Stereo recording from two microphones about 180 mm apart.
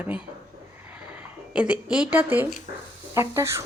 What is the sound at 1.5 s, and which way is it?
Speech, 5° right (ahead or behind).